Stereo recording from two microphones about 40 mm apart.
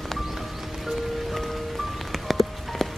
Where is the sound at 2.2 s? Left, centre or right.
Centre.